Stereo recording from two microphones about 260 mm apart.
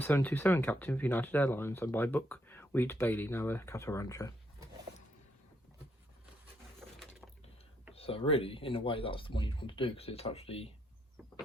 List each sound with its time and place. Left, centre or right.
0.0 s speech: centre
7.9 s speech: left